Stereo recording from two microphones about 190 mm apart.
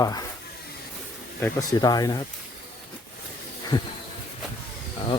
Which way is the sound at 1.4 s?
15° left (ahead or behind).